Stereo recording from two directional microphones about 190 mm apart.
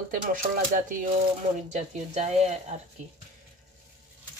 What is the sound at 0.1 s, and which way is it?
Speech, 45° right (ahead or behind).